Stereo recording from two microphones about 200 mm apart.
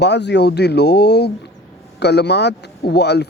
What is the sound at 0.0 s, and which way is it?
Speech, 60° left (ahead or behind).